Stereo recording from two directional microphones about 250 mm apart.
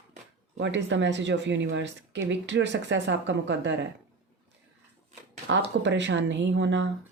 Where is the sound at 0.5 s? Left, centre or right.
Right.